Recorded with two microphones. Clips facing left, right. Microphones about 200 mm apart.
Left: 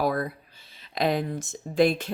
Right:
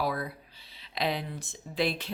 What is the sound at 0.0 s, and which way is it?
Speech, 45° left (ahead or behind).